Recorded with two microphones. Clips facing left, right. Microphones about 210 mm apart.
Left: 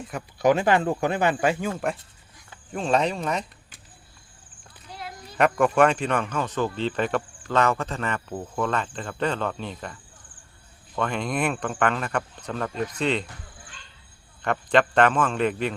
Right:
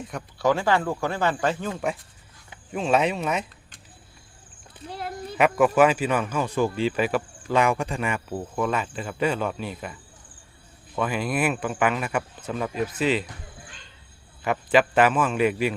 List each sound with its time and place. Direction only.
0.0 s speech: 5° left (ahead or behind)
0.3 s speech: 20° left (ahead or behind)
2.7 s speech: 5° right (ahead or behind)
4.9 s a sound: 55° right (ahead or behind)
5.4 s speech: 5° right (ahead or behind)
14.4 s speech: 5° right (ahead or behind)